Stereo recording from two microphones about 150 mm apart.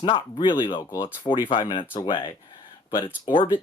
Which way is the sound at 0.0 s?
35° left (ahead or behind).